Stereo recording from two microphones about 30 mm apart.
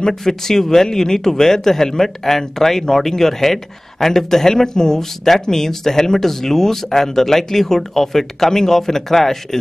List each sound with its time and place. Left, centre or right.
0.2 s speech: centre